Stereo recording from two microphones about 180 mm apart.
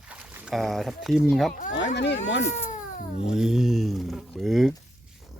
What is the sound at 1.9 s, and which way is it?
Speech, 70° left (ahead or behind).